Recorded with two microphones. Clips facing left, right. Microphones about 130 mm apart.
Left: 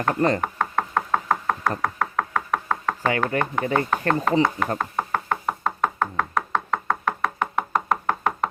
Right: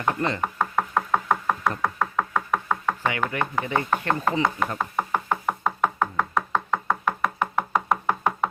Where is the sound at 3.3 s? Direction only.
40° left (ahead or behind).